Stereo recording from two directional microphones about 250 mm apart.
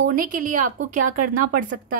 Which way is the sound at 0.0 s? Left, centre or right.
Right.